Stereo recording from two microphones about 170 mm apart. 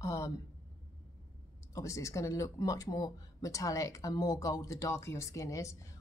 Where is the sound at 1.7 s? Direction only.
20° left (ahead or behind).